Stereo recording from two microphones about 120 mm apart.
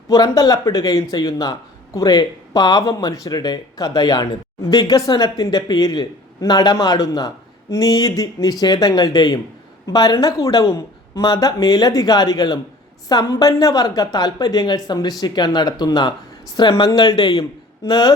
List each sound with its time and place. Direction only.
0.1 s speech: 30° left (ahead or behind)